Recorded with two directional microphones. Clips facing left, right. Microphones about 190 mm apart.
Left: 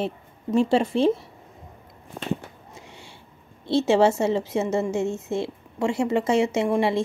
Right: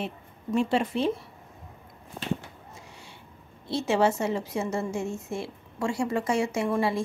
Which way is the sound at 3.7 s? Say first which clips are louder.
Left 5 dB; 25° left (ahead or behind).